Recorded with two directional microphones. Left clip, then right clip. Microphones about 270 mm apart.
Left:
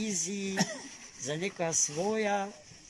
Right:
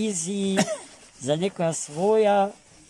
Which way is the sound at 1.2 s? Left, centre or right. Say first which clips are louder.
Right 9 dB; right.